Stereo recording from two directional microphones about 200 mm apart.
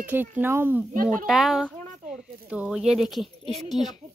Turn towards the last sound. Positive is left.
turn(degrees=0)  # may be behind; listen again after turning